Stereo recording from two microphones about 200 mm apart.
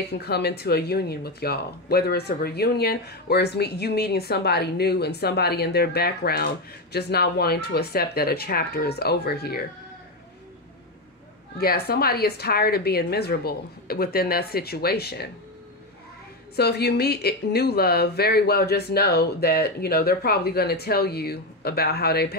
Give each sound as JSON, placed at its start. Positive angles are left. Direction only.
{"t": 0.1, "sound": "speech", "side_deg": 55}
{"t": 11.5, "sound": "speech", "side_deg": 50}
{"t": 16.5, "sound": "speech", "side_deg": 55}